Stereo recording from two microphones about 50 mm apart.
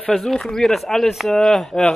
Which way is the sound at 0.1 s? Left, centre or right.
Centre.